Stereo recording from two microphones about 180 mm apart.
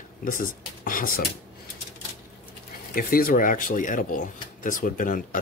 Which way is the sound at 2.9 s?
55° left (ahead or behind).